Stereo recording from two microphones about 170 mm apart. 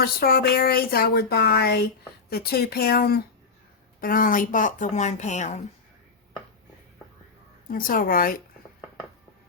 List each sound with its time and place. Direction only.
0.0 s a woman's voice: 65° left (ahead or behind); by 5.6 s 45° left (ahead or behind)
7.7 s speech: 55° left (ahead or behind)